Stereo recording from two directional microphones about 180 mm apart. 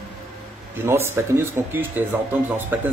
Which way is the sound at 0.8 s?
10° right (ahead or behind).